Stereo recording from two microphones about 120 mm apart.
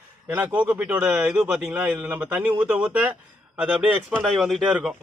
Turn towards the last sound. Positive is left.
turn(degrees=-10)  # may be behind; listen again after turning